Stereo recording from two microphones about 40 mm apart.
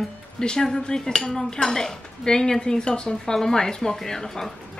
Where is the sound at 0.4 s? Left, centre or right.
Centre.